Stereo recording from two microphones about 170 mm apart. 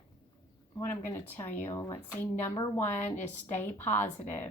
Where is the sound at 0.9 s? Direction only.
15° left (ahead or behind).